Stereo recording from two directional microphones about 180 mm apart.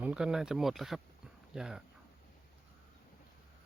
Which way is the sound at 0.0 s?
5° right (ahead or behind).